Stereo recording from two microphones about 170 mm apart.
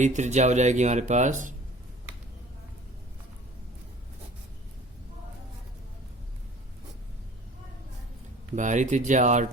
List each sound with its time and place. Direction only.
0.0 s speech: 45° right (ahead or behind)
8.5 s speech: 45° right (ahead or behind)